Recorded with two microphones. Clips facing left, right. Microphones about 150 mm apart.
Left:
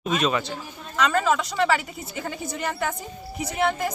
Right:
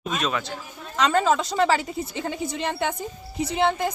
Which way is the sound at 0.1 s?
Centre (ahead or behind).